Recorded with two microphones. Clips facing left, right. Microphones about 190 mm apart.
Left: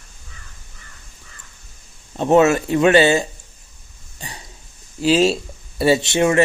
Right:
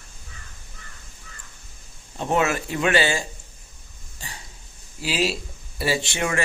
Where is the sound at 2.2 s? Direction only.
25° left (ahead or behind).